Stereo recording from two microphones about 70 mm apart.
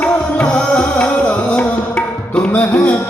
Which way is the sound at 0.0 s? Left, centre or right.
Centre.